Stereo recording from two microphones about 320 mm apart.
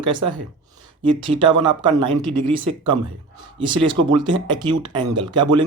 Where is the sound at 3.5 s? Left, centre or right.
Centre.